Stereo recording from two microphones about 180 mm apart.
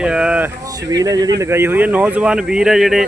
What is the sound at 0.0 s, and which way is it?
Speech, 5° right (ahead or behind).